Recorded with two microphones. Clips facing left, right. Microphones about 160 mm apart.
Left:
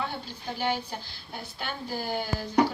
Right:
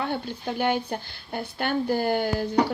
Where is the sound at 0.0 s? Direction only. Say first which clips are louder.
Right 6 dB; 60° right (ahead or behind).